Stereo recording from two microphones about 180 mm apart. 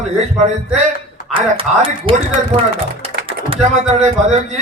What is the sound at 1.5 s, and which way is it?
Speech, 30° right (ahead or behind).